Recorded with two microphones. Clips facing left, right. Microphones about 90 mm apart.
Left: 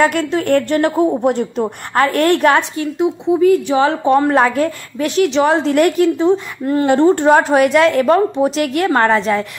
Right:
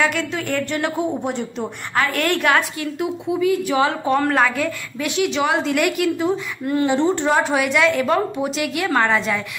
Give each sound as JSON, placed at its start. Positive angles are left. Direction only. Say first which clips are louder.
{"t": 0.0, "sound": "a woman's voice", "louder": "left 6 dB", "side_deg": 45}
{"t": 4.6, "sound": "a woman's voice", "louder": "left 6 dB", "side_deg": 40}
{"t": 6.9, "sound": "a woman's voice", "louder": "left 9 dB", "side_deg": 50}